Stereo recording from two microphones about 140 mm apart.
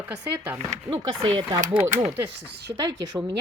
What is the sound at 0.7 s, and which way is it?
Speech, 40° right (ahead or behind).